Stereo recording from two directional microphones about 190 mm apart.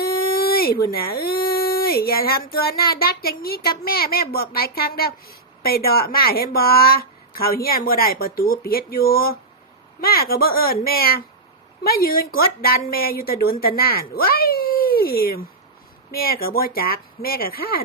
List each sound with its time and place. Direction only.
0.0 s speech: 50° left (ahead or behind)